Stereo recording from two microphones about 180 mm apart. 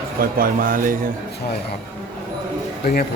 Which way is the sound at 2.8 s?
60° left (ahead or behind).